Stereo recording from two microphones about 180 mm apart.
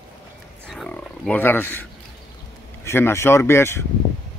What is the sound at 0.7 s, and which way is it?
Wild animals, 5° left (ahead or behind).